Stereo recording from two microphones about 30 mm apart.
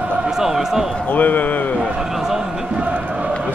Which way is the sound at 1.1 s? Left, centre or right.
Left.